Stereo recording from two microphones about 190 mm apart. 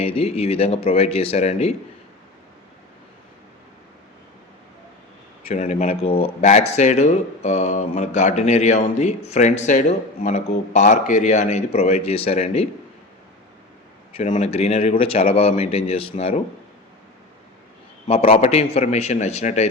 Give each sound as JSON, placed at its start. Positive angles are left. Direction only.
{"t": 0.0, "sound": "speech", "side_deg": 30}
{"t": 5.5, "sound": "speech", "side_deg": 40}
{"t": 14.2, "sound": "speech", "side_deg": 35}
{"t": 18.1, "sound": "speech", "side_deg": 30}